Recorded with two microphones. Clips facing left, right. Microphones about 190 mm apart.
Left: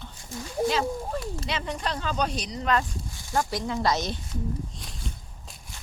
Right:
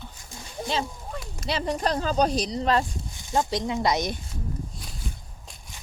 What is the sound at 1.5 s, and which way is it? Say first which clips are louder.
Speech: right 7 dB; 35° right (ahead or behind).